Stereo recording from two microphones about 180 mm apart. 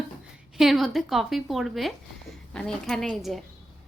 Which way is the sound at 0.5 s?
Centre (ahead or behind).